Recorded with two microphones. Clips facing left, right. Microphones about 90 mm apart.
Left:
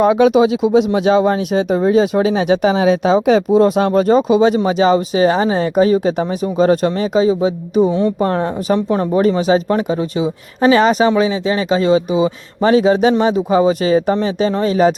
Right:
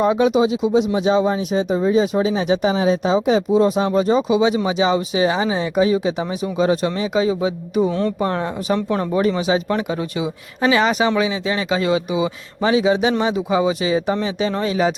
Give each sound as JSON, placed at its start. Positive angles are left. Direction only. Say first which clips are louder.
{"t": 0.0, "sound": "speech", "louder": "left 5 dB", "side_deg": 75}